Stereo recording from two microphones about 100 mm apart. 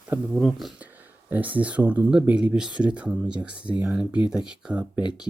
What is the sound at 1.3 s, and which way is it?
Speech, 15° right (ahead or behind).